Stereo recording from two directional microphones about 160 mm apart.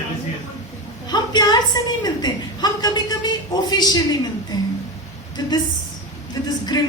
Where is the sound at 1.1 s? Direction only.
25° left (ahead or behind).